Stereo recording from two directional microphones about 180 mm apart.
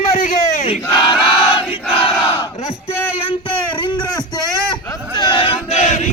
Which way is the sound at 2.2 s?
30° left (ahead or behind).